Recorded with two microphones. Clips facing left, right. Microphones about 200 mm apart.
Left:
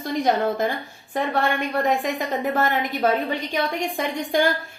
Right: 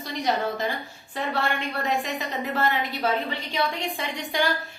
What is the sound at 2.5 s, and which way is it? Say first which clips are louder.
A woman's voice: left 3 dB; 50° left (ahead or behind).